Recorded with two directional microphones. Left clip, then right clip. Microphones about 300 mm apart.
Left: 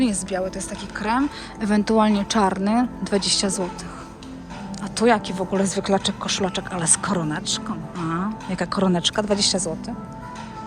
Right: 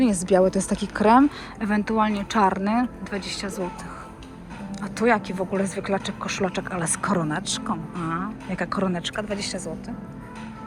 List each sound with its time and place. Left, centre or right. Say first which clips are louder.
0.0 s speech: right 5 dB; centre
4.8 s speech: left 2 dB; centre